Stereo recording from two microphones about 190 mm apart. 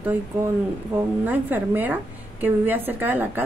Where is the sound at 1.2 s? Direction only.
10° right (ahead or behind).